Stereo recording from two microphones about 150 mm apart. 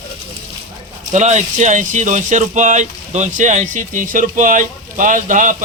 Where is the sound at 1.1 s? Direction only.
50° right (ahead or behind).